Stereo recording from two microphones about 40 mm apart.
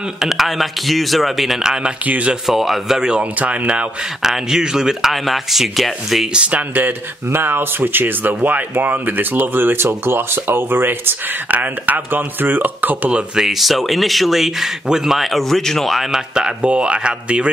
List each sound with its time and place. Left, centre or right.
0.2 s a man's voice: centre
1.6 s speech: centre
2.0 s speech: right
2.4 s a man's voice: centre
3.2 s speech: right
4.2 s speech: centre
5.1 s a man's voice: centre
6.5 s speech: right
7.2 s speech: right
13.3 s speech: centre
13.6 s a man's voice: centre
14.9 s speech: centre
15.1 s a man's voice: centre
16.1 s speech: centre